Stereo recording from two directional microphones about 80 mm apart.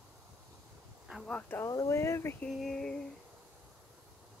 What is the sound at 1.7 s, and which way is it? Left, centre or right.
Speech, left.